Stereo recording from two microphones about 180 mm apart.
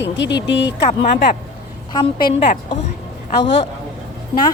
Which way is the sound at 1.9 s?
25° left (ahead or behind).